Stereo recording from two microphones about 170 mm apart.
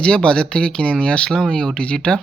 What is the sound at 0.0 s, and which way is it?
Speech, 5° left (ahead or behind).